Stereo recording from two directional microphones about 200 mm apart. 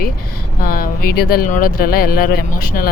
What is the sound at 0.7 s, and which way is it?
Speech, 50° left (ahead or behind).